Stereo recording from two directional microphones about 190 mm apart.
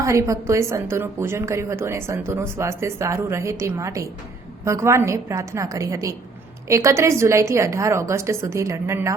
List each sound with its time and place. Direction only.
0.0 s a woman's voice: 15° right (ahead or behind)